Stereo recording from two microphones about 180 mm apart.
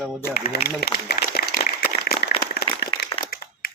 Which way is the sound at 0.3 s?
60° left (ahead or behind).